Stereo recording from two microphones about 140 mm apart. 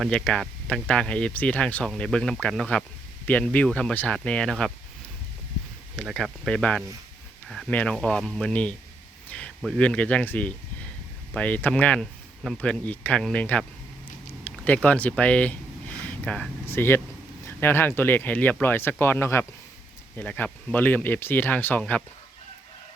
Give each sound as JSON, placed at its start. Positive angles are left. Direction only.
{"t": 0.1, "sound": "speech", "side_deg": 10}
{"t": 6.0, "sound": "speech", "side_deg": 0}
{"t": 9.8, "sound": "speech", "side_deg": 10}